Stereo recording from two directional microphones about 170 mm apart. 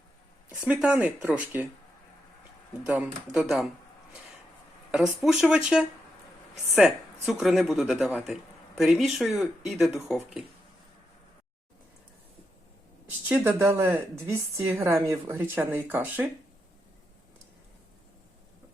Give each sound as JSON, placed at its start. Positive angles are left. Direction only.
{"t": 0.5, "sound": "a woman's voice", "side_deg": -5}
{"t": 2.8, "sound": "speech", "side_deg": -5}
{"t": 5.2, "sound": "speech", "side_deg": -5}
{"t": 13.1, "sound": "a woman's voice", "side_deg": -10}